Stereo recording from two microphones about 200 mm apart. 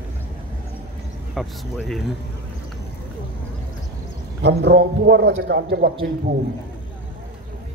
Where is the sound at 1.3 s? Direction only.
Centre (ahead or behind).